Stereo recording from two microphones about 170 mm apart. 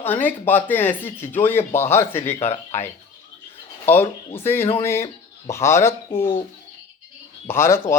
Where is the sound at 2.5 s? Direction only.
40° left (ahead or behind).